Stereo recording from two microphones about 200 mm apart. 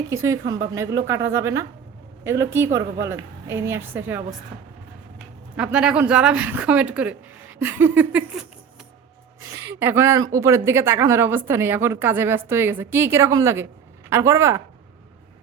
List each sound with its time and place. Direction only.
0.1 s a woman's voice: 15° right (ahead or behind)
5.5 s a woman's voice: 5° right (ahead or behind)